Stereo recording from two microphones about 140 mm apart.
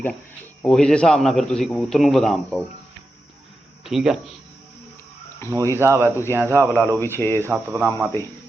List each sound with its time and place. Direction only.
0.6 s a man's voice: 5° left (ahead or behind)
3.8 s a man's voice: centre (ahead or behind)
5.5 s speech: 20° right (ahead or behind)
7.1 s speech: 15° left (ahead or behind)
7.4 s speech: 15° right (ahead or behind)